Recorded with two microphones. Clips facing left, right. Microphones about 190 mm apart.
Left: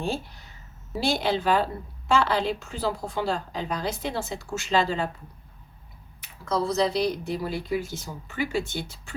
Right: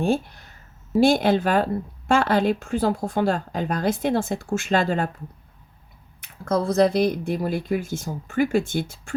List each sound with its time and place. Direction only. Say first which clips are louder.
0.0 s speech: right 8 dB; 50° right (ahead or behind)
6.2 s speech: right 4 dB; 50° right (ahead or behind)